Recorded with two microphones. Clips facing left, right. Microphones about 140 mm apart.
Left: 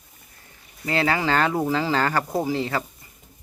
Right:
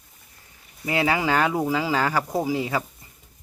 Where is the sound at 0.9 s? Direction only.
15° right (ahead or behind).